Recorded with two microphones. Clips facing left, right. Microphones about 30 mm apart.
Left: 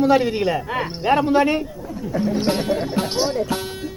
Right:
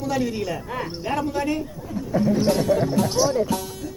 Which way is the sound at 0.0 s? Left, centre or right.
Left.